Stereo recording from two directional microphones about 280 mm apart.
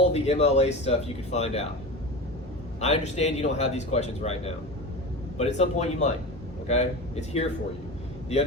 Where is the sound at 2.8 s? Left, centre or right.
Left.